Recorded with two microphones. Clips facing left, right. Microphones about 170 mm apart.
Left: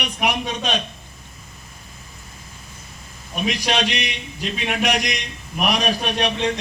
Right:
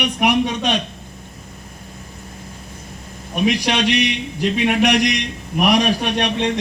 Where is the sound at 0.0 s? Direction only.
65° right (ahead or behind).